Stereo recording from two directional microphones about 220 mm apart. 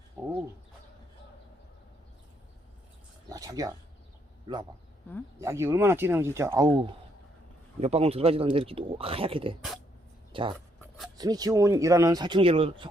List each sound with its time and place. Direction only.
3.2 s speech: 15° right (ahead or behind)
5.4 s speech: 10° right (ahead or behind)